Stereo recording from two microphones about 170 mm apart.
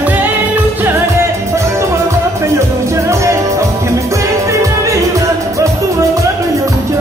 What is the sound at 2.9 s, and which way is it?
Music, 15° right (ahead or behind).